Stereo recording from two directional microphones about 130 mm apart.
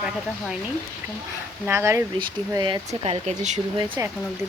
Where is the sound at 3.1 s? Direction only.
65° right (ahead or behind).